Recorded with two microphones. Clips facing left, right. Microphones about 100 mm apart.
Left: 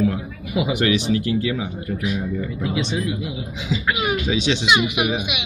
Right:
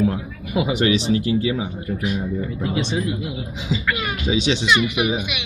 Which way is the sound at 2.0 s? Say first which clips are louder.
Even; 35° right (ahead or behind).